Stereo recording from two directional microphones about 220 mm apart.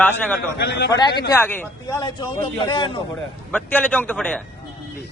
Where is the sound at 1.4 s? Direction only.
10° left (ahead or behind).